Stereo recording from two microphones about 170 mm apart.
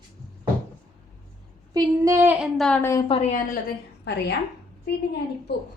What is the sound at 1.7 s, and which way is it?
Speech, 15° right (ahead or behind).